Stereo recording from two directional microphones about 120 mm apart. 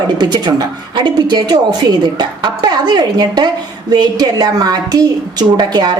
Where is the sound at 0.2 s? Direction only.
35° right (ahead or behind).